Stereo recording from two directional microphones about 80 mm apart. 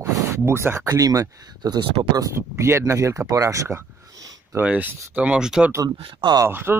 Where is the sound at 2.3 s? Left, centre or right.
Right.